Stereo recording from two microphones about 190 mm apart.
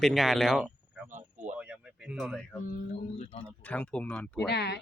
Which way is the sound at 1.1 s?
40° right (ahead or behind).